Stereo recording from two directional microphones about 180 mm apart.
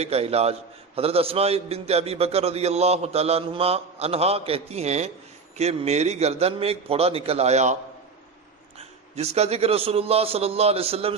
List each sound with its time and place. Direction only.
0.0 s a man's voice: 35° right (ahead or behind)
8.8 s a man's voice: 35° right (ahead or behind)